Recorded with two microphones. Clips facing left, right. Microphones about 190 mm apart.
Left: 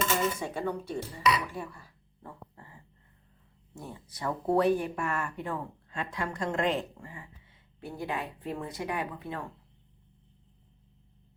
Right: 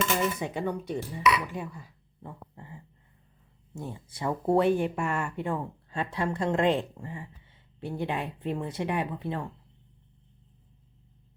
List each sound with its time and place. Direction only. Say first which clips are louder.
0.3 s speech: right 2 dB; 15° right (ahead or behind)
3.8 s speech: right 4 dB; 25° right (ahead or behind)